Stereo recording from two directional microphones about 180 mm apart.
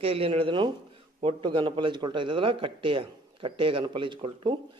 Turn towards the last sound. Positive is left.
turn(degrees=-25)  # may be behind; listen again after turning